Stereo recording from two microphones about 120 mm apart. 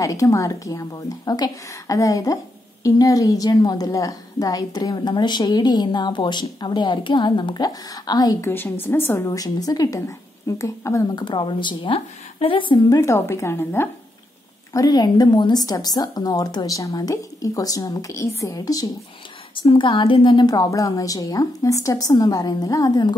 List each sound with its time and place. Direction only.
0.0 s a woman's voice: 25° left (ahead or behind)
8.5 s a woman's voice: 20° left (ahead or behind)
11.1 s speech: 40° left (ahead or behind)
13.0 s a woman's voice: 25° left (ahead or behind)
14.7 s a woman's voice: 30° left (ahead or behind)
19.5 s a woman's voice: 50° left (ahead or behind)